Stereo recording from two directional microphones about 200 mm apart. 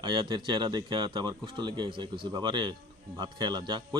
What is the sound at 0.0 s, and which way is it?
Speech, 25° right (ahead or behind).